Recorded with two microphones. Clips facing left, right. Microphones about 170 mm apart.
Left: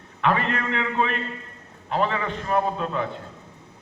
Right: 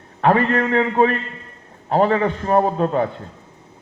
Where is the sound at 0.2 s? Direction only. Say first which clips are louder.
Right 7 dB; 40° right (ahead or behind).